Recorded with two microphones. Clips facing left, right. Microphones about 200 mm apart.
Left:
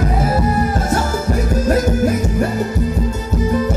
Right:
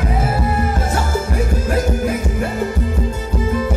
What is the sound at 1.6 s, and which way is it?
Music, 40° left (ahead or behind).